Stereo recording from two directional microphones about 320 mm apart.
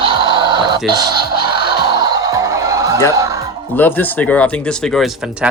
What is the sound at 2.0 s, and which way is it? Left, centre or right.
Music, centre.